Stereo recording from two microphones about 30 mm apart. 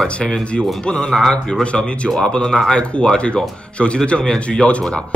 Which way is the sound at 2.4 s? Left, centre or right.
Centre.